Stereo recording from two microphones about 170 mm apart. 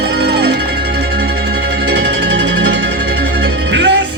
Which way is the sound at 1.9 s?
80° right.